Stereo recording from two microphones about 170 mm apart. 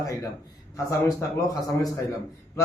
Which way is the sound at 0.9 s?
20° left (ahead or behind).